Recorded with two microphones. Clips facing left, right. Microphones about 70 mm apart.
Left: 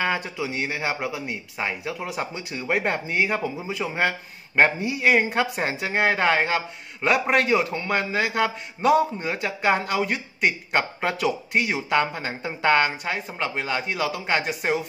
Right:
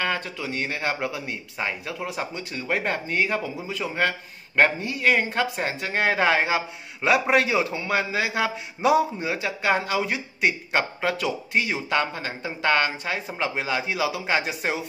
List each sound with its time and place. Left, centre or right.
0.0 s speech: centre